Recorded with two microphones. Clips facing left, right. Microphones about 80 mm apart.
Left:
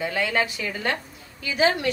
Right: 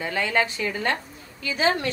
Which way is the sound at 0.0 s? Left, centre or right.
Right.